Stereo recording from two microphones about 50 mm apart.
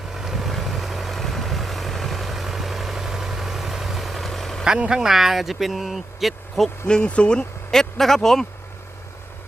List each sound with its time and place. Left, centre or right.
0.1 s vehicle: centre
4.9 s speech: centre
6.8 s speech: centre
7.7 s speech: centre